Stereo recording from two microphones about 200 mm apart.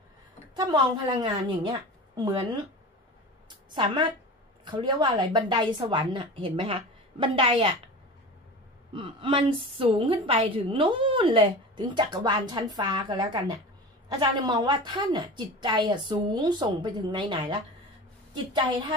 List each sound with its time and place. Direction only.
0.6 s a woman's voice: 20° right (ahead or behind)
3.4 s a sound: 25° right (ahead or behind)
4.6 s a woman's voice: 20° right (ahead or behind)
8.9 s a woman's voice: 25° right (ahead or behind)